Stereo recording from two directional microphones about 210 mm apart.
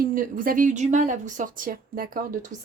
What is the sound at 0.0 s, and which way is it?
A woman's voice, 40° right (ahead or behind).